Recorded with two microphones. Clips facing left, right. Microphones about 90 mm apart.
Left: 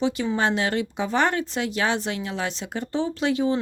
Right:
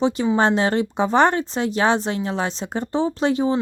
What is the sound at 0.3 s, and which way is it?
Speech, 30° right (ahead or behind).